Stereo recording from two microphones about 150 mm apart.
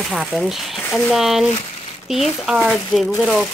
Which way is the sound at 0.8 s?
10° left (ahead or behind).